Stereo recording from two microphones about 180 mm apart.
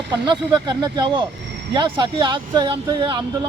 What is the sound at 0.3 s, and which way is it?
A man's voice, 25° right (ahead or behind).